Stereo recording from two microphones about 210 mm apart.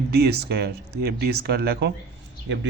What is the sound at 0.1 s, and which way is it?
Speech, 50° right (ahead or behind).